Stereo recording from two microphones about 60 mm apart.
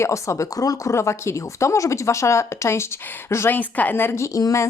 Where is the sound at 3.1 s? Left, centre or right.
Left.